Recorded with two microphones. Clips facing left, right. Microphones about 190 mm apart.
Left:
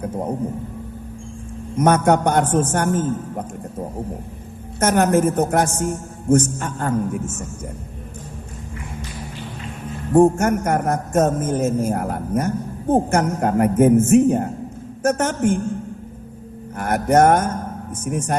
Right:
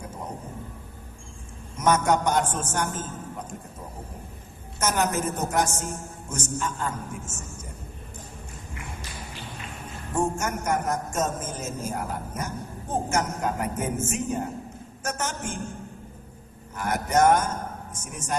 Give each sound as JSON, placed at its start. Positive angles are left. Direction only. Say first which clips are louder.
{"t": 1.7, "sound": "a man's voice", "louder": "left 6 dB", "side_deg": 55}
{"t": 10.2, "sound": "a man's voice", "louder": "left 13 dB", "side_deg": 60}
{"t": 16.7, "sound": "a man's voice", "louder": "left 7 dB", "side_deg": 55}